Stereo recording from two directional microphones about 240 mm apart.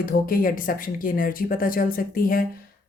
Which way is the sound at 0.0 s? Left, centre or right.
Left.